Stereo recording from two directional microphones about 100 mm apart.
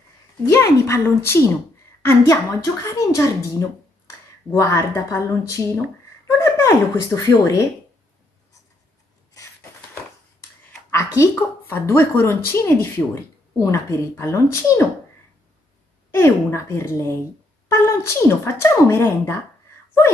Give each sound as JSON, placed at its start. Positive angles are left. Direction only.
{"t": 0.5, "sound": "speech", "side_deg": 30}
{"t": 10.9, "sound": "speech", "side_deg": 30}
{"t": 16.1, "sound": "speech", "side_deg": 25}